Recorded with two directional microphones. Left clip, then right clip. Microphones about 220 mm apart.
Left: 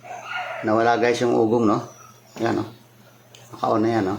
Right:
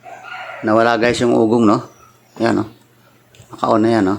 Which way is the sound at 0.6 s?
45° right (ahead or behind).